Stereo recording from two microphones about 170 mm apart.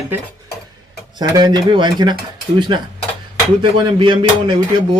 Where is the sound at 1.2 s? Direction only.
25° right (ahead or behind).